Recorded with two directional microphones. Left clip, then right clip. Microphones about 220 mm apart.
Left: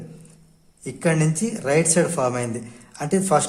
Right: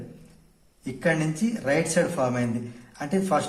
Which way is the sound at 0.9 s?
45° left (ahead or behind).